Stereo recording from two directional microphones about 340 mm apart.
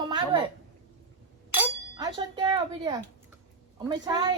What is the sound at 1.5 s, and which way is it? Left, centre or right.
Chink, centre.